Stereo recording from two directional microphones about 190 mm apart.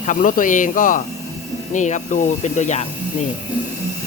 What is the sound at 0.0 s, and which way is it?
Speech, 40° left (ahead or behind).